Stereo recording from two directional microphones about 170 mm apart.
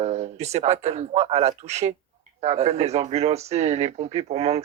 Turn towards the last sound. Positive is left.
turn(degrees=-40)  # may be behind; listen again after turning